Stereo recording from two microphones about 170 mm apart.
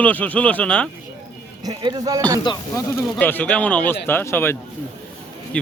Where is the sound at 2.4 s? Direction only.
20° left (ahead or behind).